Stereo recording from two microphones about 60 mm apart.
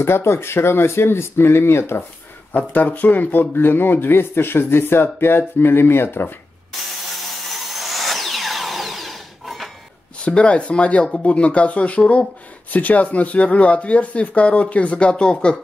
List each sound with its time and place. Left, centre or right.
0.0 s speech: left
2.5 s speech: left
6.7 s sawing: centre
10.2 s speech: centre